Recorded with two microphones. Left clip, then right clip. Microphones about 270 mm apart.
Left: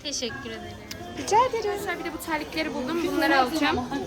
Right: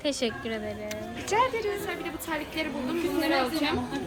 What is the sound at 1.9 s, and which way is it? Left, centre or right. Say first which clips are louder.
A woman's voice: left 3 dB; centre.